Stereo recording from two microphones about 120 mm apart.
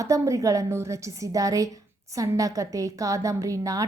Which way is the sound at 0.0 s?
25° right (ahead or behind).